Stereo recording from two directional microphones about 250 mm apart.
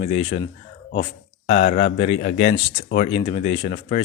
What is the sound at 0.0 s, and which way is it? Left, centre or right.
Speech, left.